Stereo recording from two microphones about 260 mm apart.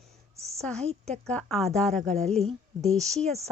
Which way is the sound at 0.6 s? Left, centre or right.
Centre.